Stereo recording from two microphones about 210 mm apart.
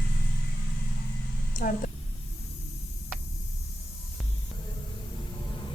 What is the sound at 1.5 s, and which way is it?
Speech, 40° left (ahead or behind).